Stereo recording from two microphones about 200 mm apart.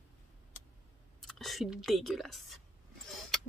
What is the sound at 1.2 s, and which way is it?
Speech, centre (ahead or behind).